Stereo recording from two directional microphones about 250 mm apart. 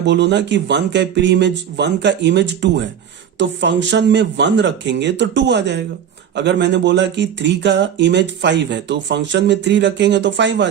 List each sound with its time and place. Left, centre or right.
0.0 s speech: right